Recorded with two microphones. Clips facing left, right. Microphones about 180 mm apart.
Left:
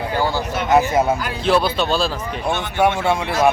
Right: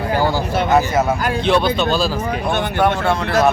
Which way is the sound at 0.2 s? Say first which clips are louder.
Right 1 dB; 15° right (ahead or behind).